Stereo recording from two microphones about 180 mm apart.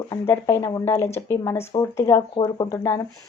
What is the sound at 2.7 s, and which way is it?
Speech, 15° left (ahead or behind).